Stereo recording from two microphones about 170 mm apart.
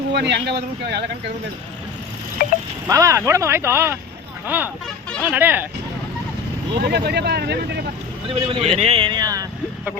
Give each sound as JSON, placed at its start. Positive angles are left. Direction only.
{"t": 0.1, "sound": "speech", "side_deg": -90}
{"t": 2.4, "sound": "a sound", "side_deg": 55}
{"t": 2.8, "sound": "speech", "side_deg": -20}
{"t": 6.7, "sound": "speech", "side_deg": -70}
{"t": 8.3, "sound": "speech", "side_deg": -30}